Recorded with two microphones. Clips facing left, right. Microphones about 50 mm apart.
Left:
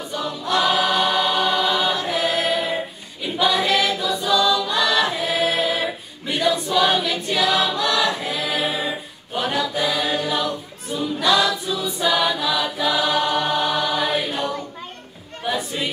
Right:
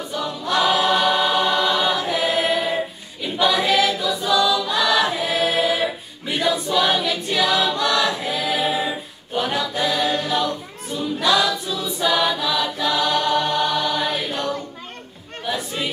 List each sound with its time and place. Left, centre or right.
0.1 s choir: centre